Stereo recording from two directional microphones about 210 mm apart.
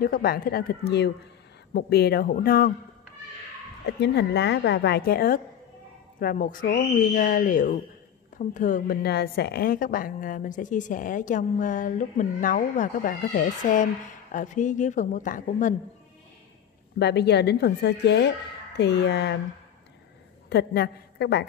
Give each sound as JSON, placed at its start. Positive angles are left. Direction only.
{"t": 0.0, "sound": "speech", "side_deg": 45}
{"t": 3.8, "sound": "a woman's voice", "side_deg": 55}
{"t": 17.0, "sound": "speech", "side_deg": 50}
{"t": 20.4, "sound": "a woman's voice", "side_deg": 50}